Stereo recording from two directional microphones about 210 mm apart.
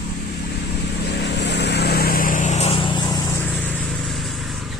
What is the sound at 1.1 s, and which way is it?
Vehicle, 55° left (ahead or behind).